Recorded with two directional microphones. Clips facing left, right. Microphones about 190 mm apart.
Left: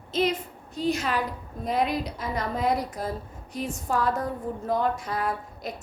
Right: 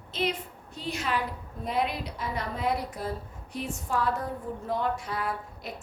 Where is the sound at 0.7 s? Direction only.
40° left (ahead or behind).